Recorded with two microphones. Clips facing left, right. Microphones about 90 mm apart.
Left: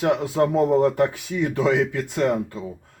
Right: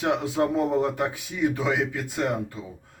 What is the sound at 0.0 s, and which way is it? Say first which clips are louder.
Speech: left 4 dB; 45° left (ahead or behind).